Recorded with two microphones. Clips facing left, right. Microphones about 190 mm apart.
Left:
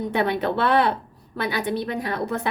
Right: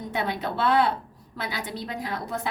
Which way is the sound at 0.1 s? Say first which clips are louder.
Left 5 dB; 60° left (ahead or behind).